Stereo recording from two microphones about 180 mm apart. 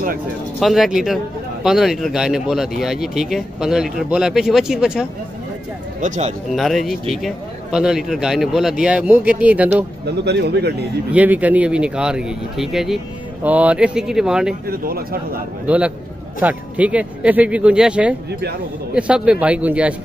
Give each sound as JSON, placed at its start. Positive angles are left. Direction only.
{"t": 0.6, "sound": "speech", "side_deg": 0}
{"t": 5.9, "sound": "speech", "side_deg": -40}
{"t": 6.5, "sound": "speech", "side_deg": 0}
{"t": 10.2, "sound": "a man's voice", "side_deg": -70}
{"t": 11.1, "sound": "speech", "side_deg": -10}
{"t": 14.7, "sound": "speech", "side_deg": -55}
{"t": 16.3, "sound": "speech", "side_deg": -10}